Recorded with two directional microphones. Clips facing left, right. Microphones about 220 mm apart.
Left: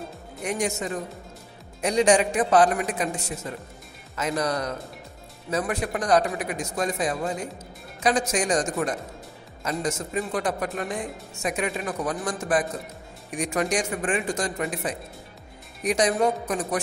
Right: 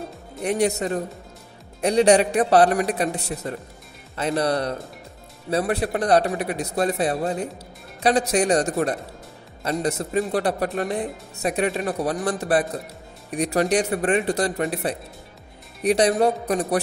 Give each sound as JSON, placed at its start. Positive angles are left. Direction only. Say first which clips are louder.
{"t": 0.4, "sound": "speech", "louder": "right 6 dB", "side_deg": -35}
{"t": 4.2, "sound": "speech", "louder": "right 4 dB", "side_deg": -30}